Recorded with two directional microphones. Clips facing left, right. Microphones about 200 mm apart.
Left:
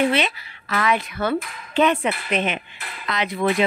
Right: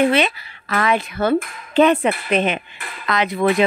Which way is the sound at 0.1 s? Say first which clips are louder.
Right 4 dB; 50° right (ahead or behind).